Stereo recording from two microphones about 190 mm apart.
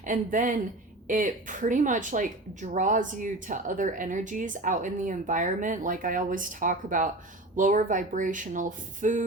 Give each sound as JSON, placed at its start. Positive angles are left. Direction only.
{"t": 0.0, "sound": "speech", "side_deg": -45}